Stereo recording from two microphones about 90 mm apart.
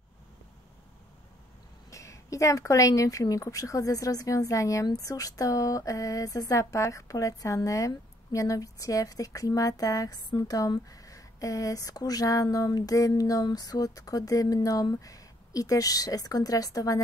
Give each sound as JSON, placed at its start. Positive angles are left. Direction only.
{"t": 1.9, "sound": "speech", "side_deg": 35}